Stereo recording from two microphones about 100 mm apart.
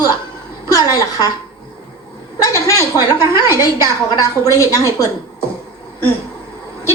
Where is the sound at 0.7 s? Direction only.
35° left (ahead or behind).